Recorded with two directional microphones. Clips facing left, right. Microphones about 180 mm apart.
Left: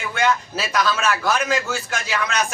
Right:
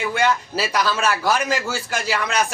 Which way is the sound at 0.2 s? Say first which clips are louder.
Left 1 dB; 35° right (ahead or behind).